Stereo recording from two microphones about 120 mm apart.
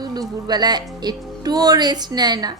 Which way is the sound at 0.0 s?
35° right (ahead or behind).